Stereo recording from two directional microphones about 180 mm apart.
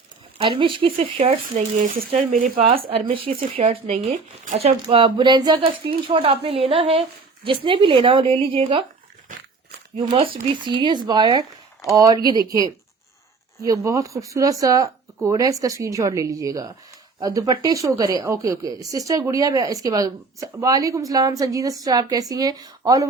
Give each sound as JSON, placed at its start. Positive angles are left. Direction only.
{"t": 0.4, "sound": "speech", "side_deg": -30}
{"t": 1.5, "sound": "speech", "side_deg": -50}
{"t": 2.6, "sound": "speech", "side_deg": -30}
{"t": 10.5, "sound": "speech", "side_deg": -25}